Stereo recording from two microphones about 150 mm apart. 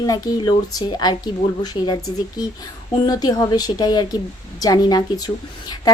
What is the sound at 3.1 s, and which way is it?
Speech, 25° left (ahead or behind).